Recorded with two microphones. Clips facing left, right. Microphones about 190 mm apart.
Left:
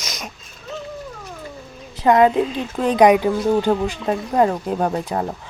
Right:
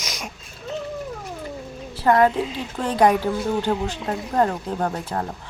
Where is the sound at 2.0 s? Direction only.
20° left (ahead or behind).